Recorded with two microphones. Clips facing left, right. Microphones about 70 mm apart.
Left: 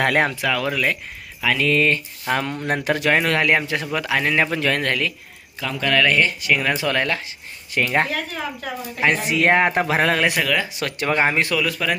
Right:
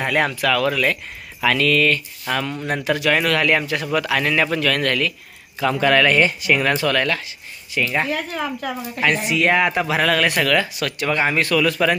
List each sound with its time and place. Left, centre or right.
0.2 s speech: centre
5.5 s speech: centre
6.7 s speech: centre
7.7 s speech: left
8.1 s speech: right
9.0 s speech: left
10.2 s speech: centre
10.8 s speech: left
11.4 s a man's voice: centre